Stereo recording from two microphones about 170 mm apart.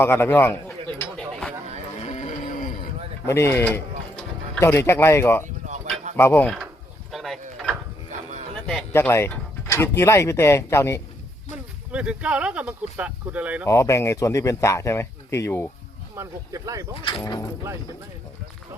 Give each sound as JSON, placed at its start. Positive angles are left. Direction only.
{"t": 0.0, "sound": "speech", "side_deg": 15}
{"t": 1.2, "sound": "a sound", "side_deg": 5}
{"t": 2.0, "sound": "a sound", "side_deg": 45}
{"t": 3.2, "sound": "speech", "side_deg": 15}
{"t": 5.6, "sound": "a sound", "side_deg": -45}
{"t": 6.1, "sound": "speech", "side_deg": 10}
{"t": 7.1, "sound": "a sound", "side_deg": 0}
{"t": 8.9, "sound": "speech", "side_deg": 15}
{"t": 11.9, "sound": "speech", "side_deg": -5}
{"t": 13.7, "sound": "speech", "side_deg": 15}
{"t": 16.1, "sound": "speech", "side_deg": -20}
{"t": 17.1, "sound": "speech", "side_deg": 25}